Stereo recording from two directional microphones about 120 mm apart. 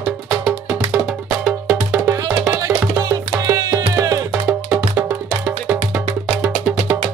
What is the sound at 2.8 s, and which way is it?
Music, 20° right (ahead or behind).